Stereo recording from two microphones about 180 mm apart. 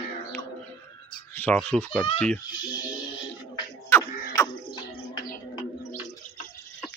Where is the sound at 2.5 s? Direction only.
25° left (ahead or behind).